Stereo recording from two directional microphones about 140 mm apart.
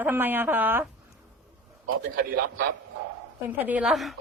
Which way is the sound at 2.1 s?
90° right.